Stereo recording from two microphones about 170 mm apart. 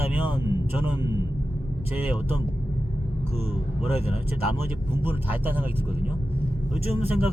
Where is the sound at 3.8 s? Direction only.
40° left (ahead or behind).